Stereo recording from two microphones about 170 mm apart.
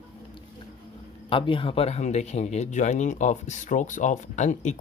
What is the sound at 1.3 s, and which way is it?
Speech, 30° left (ahead or behind).